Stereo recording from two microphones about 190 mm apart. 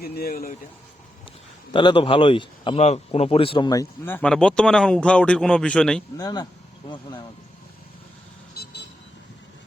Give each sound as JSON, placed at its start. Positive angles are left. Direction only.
{"t": 0.0, "sound": "speech", "side_deg": 55}
{"t": 1.7, "sound": "speech", "side_deg": 25}
{"t": 6.1, "sound": "speech", "side_deg": 20}